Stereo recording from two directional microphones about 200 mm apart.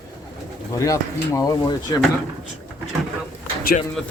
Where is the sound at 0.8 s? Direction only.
15° left (ahead or behind).